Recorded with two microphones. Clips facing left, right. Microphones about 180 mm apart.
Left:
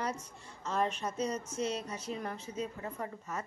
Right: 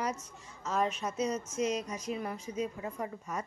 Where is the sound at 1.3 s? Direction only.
10° right (ahead or behind).